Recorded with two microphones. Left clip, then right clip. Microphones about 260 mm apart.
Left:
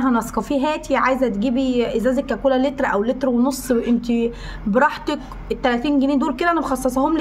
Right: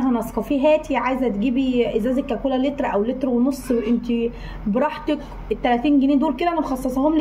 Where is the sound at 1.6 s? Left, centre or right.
Left.